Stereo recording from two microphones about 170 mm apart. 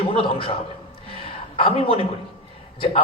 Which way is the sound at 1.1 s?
30° left (ahead or behind).